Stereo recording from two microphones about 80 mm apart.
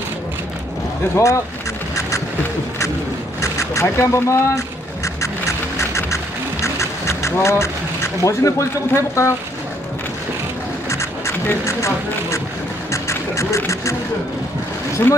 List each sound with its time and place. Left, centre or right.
1.1 s speech: left
2.0 s a sound: left
3.3 s vehicle: left
3.8 s speech: left
5.8 s music: left
6.6 s a sound: left
10.9 s music: left
11.4 s speech: left
12.9 s music: left